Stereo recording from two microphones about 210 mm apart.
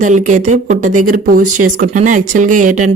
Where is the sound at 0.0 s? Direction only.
35° right (ahead or behind).